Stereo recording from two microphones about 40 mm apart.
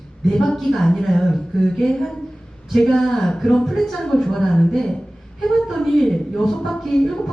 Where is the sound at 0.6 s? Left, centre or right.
Centre.